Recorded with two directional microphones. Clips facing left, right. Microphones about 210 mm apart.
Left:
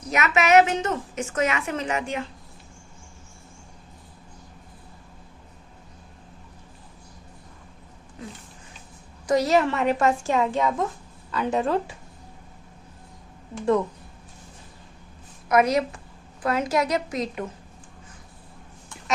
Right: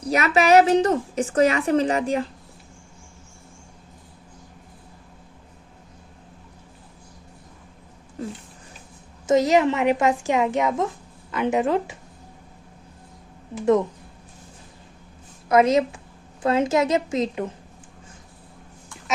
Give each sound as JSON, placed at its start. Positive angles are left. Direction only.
{"t": 0.0, "sound": "a woman's voice", "side_deg": -35}
{"t": 9.2, "sound": "a woman's voice", "side_deg": -20}
{"t": 15.4, "sound": "a woman's voice", "side_deg": -25}